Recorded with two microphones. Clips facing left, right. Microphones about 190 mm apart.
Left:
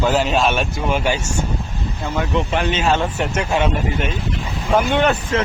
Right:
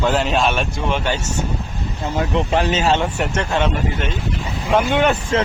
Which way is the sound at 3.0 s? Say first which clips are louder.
Even; 5° left (ahead or behind).